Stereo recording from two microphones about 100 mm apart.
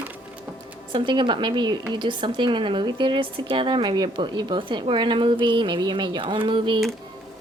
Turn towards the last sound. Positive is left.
turn(degrees=-55)  # may be behind; listen again after turning